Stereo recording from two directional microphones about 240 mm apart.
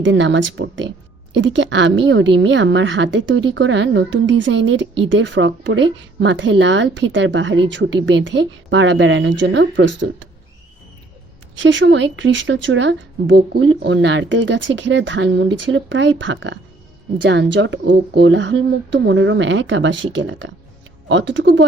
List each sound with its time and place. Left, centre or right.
0.0 s a woman's voice: right
11.5 s a woman's voice: right